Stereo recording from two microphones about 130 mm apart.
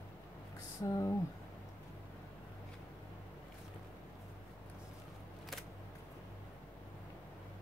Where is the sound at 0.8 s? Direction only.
25° left (ahead or behind).